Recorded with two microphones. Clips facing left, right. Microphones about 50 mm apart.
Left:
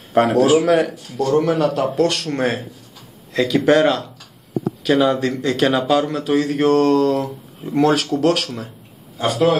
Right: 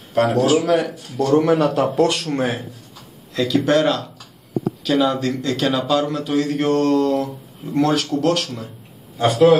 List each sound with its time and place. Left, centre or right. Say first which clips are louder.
0.1 s speech: left 2 dB; left
0.7 s speech: left 2 dB; centre
3.3 s a man's voice: left 2 dB; centre